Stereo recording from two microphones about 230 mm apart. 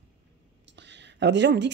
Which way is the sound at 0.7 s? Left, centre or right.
Right.